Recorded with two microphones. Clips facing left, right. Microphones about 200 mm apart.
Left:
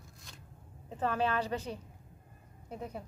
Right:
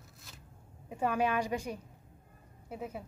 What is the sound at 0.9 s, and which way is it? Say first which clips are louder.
Speech: right 1 dB; 15° right (ahead or behind).